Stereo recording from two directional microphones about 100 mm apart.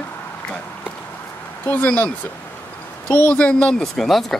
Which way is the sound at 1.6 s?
20° left (ahead or behind).